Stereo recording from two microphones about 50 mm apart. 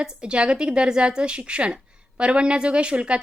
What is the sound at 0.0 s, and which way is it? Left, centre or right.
A woman's voice, right.